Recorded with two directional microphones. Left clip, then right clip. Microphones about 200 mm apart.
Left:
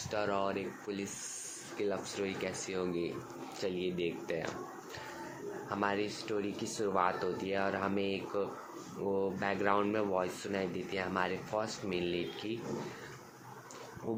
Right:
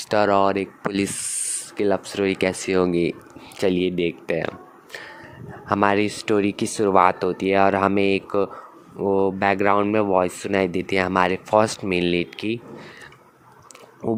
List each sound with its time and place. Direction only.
0.1 s speech: 55° right (ahead or behind)